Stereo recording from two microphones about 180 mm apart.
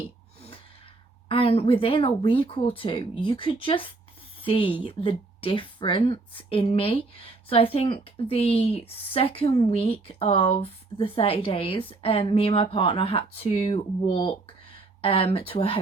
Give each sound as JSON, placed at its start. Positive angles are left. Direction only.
{"t": 1.3, "sound": "a woman's voice", "side_deg": 30}